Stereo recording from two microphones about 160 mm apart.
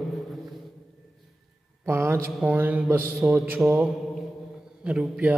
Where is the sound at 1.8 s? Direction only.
15° right (ahead or behind).